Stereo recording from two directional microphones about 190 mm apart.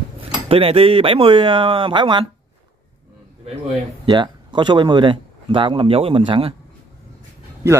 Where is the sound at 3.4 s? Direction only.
30° right (ahead or behind).